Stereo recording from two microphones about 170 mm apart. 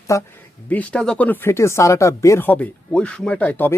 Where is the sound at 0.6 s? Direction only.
10° left (ahead or behind).